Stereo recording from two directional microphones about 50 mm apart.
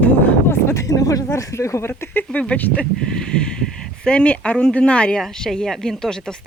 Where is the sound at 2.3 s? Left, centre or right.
Left.